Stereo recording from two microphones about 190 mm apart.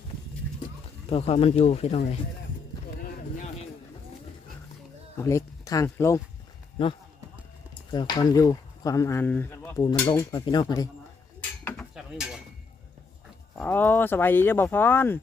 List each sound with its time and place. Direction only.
1.1 s speech: 30° left (ahead or behind)
3.0 s a sound: 50° left (ahead or behind)
5.1 s speech: 15° left (ahead or behind)
7.9 s speech: 25° left (ahead or behind)
11.3 s cutlery: 5° left (ahead or behind)
13.6 s speech: 10° left (ahead or behind)